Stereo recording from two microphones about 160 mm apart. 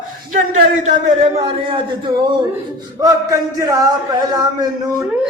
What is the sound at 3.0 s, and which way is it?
A man's voice, 20° right (ahead or behind).